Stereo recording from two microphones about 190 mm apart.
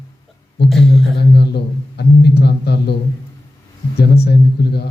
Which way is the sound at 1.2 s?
60° left (ahead or behind).